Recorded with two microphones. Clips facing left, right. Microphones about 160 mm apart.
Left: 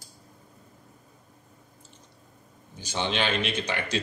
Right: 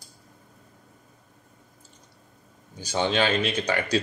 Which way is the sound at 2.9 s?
45° right (ahead or behind).